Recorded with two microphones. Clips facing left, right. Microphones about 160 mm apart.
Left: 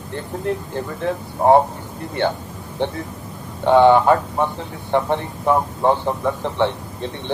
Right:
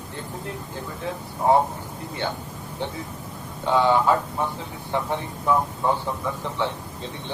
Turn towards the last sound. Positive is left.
turn(degrees=65)  # may be behind; listen again after turning